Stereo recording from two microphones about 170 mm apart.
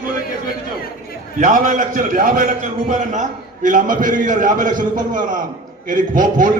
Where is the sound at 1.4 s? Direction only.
50° right (ahead or behind).